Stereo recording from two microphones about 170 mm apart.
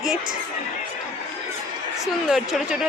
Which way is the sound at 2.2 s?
5° right (ahead or behind).